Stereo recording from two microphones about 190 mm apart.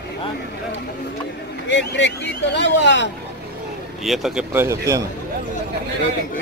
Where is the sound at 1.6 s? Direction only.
70° left (ahead or behind).